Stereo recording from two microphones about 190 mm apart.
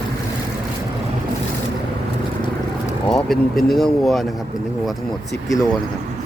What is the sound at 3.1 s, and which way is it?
Speech, centre (ahead or behind).